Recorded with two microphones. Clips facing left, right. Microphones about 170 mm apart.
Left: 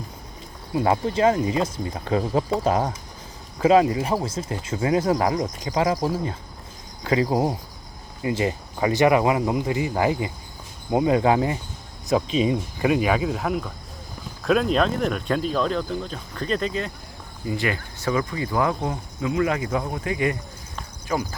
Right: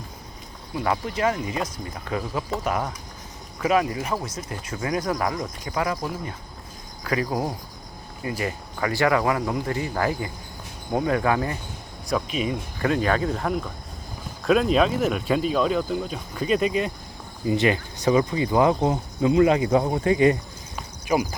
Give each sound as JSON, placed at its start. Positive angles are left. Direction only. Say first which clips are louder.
{"t": 0.7, "sound": "speech", "louder": "left 4 dB", "side_deg": 25}
{"t": 12.8, "sound": "speech", "louder": "left 1 dB", "side_deg": 10}
{"t": 20.7, "sound": "cricket", "louder": "right 3 dB", "side_deg": -10}